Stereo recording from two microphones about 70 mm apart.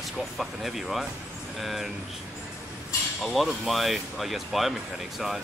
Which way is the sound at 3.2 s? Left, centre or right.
Centre.